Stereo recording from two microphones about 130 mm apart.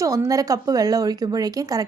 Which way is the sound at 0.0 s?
25° right (ahead or behind).